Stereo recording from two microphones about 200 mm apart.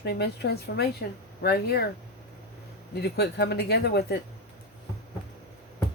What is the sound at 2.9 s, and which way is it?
Speech, 55° left (ahead or behind).